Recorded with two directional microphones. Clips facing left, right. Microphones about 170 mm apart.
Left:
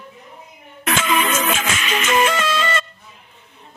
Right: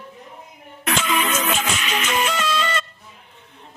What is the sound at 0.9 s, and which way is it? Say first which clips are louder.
Music: left 2 dB; 90° left.